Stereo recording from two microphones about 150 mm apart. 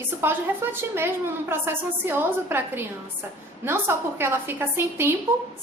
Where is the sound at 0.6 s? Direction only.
15° right (ahead or behind).